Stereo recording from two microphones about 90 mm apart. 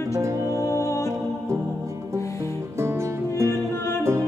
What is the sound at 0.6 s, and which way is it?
Music, 35° left (ahead or behind).